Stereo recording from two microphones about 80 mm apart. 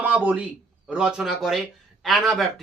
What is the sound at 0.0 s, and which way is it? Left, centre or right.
A man's voice, centre.